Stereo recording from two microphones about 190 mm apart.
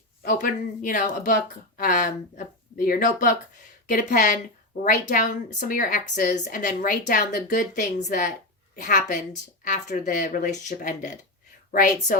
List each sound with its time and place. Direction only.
0.2 s a woman's voice: 45° left (ahead or behind)